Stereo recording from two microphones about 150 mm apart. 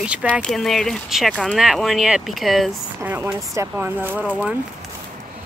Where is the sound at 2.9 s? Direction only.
10° right (ahead or behind).